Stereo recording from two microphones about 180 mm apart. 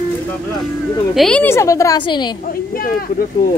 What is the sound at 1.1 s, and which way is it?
A woman's voice, 5° left (ahead or behind).